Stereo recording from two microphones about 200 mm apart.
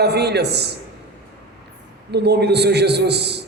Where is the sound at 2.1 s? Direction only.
55° right (ahead or behind).